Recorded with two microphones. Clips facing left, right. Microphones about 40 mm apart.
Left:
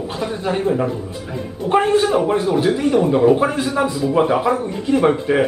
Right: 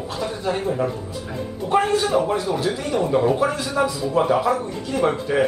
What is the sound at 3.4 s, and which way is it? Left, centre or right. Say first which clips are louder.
A man's voice: left 3 dB; left.